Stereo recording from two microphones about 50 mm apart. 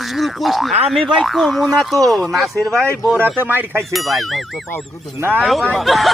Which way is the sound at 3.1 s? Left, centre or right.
Right.